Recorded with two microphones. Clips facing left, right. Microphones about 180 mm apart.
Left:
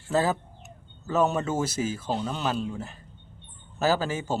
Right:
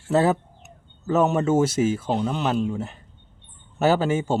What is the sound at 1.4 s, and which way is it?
Speech, 25° right (ahead or behind).